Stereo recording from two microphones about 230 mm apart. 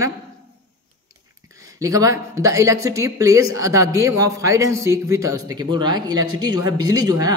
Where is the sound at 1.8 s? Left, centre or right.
Centre.